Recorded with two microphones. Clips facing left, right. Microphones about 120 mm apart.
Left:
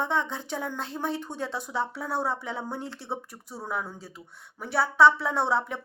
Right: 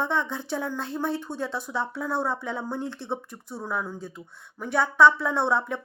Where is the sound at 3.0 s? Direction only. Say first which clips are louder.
Right 3 dB; 10° left (ahead or behind).